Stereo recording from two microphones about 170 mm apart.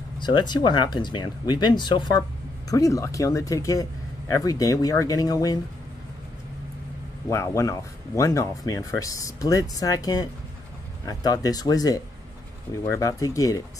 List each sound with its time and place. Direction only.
0.2 s speech: 25° left (ahead or behind)
7.2 s speech: 15° left (ahead or behind)